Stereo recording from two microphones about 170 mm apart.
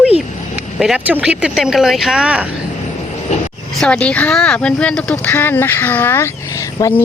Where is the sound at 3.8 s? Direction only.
5° left (ahead or behind).